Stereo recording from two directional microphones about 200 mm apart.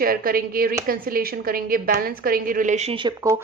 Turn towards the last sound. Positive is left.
turn(degrees=-25)  # may be behind; listen again after turning